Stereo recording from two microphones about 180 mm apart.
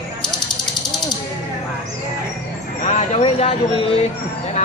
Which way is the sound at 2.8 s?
40° left (ahead or behind).